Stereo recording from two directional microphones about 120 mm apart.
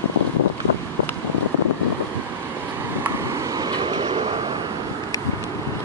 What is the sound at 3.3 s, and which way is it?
Vehicle, 30° right (ahead or behind).